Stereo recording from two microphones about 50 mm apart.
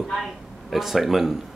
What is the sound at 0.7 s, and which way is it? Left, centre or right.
Speech, centre.